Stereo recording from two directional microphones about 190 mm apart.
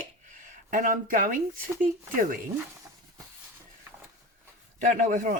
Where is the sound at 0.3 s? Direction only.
45° right (ahead or behind).